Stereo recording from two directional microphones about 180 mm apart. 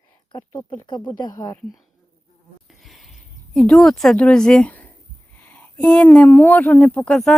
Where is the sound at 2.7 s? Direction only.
Centre (ahead or behind).